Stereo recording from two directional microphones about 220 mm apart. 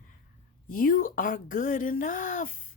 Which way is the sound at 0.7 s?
40° left (ahead or behind).